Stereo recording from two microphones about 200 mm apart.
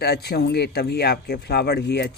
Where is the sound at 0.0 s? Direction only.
55° left (ahead or behind).